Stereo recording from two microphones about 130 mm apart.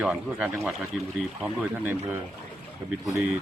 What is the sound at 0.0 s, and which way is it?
A man's voice, 10° right (ahead or behind).